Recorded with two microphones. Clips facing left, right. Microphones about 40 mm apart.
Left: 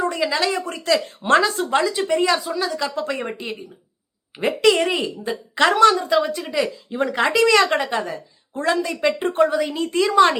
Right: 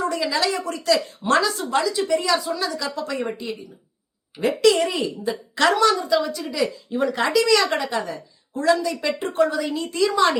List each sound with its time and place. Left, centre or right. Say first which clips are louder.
0.0 s a woman's voice: left 1 dB; left
3.0 s speech: left 1 dB; left
4.4 s a woman's voice: left 1 dB; left
7.3 s speech: left 4 dB; left